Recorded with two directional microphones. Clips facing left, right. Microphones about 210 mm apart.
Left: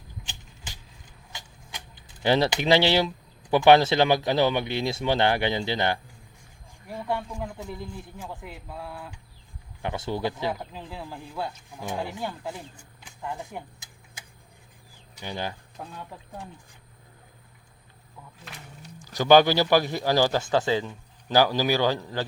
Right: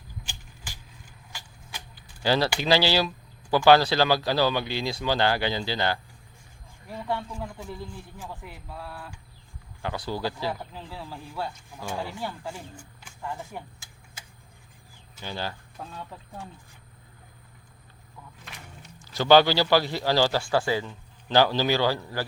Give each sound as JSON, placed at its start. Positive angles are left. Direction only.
{"t": 0.3, "sound": "vehicle", "side_deg": 20}
{"t": 7.1, "sound": "speech", "side_deg": 15}
{"t": 15.1, "sound": "a man's voice", "side_deg": 20}
{"t": 19.1, "sound": "a man's voice", "side_deg": 15}